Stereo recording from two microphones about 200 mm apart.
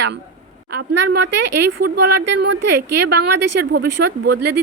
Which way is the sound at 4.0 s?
60° right (ahead or behind).